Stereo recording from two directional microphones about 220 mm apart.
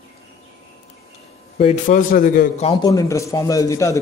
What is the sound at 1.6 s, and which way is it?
A man's voice, 30° left (ahead or behind).